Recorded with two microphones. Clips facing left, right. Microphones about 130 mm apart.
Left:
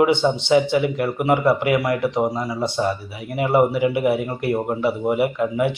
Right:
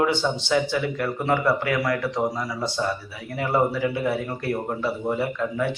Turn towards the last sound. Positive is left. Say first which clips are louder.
# left 5 dB
turn(degrees=20)  # may be behind; listen again after turning